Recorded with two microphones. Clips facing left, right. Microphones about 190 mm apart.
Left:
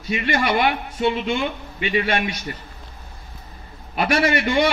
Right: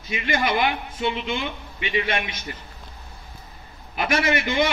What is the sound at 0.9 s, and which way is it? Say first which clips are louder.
A man's voice: left 5 dB; 35° left (ahead or behind).